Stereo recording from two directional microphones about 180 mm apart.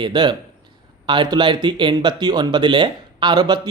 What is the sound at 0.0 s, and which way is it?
A man's voice, 25° right (ahead or behind).